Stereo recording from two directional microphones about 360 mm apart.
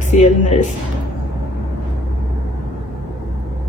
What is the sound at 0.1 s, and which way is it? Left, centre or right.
Speech, centre.